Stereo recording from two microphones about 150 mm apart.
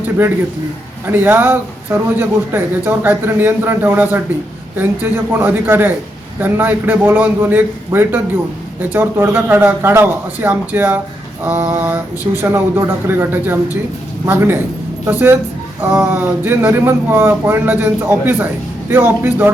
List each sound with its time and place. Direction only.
1.0 s a man's voice: 15° right (ahead or behind)